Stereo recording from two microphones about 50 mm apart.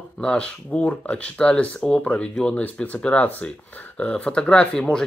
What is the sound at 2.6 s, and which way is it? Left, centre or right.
Speech, left.